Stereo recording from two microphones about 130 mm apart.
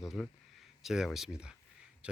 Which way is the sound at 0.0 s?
Centre (ahead or behind).